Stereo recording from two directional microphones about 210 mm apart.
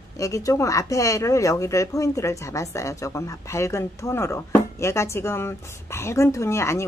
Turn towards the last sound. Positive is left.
turn(degrees=15)  # may be behind; listen again after turning